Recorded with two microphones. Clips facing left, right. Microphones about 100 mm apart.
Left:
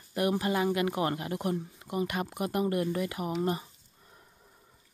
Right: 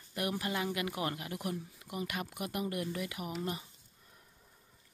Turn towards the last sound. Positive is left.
turn(degrees=35)  # may be behind; listen again after turning